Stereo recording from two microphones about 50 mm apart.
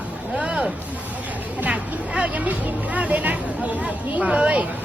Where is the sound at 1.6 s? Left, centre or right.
Right.